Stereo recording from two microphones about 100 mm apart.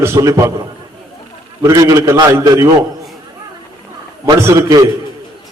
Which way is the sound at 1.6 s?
35° right (ahead or behind).